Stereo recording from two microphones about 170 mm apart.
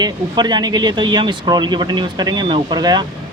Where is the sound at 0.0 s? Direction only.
25° right (ahead or behind).